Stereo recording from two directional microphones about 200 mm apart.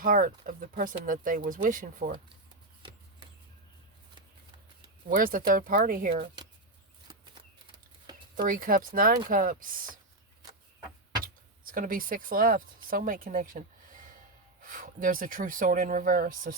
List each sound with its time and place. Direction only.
0.0 s speech: 45° right (ahead or behind)
5.0 s speech: 45° right (ahead or behind)
8.4 s speech: 45° right (ahead or behind)
11.2 s speech: 45° right (ahead or behind)